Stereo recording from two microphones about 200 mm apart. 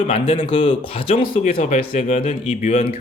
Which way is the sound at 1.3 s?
40° left (ahead or behind).